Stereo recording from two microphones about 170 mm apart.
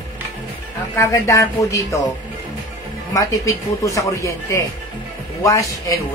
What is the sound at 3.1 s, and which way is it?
Speech, 20° left (ahead or behind).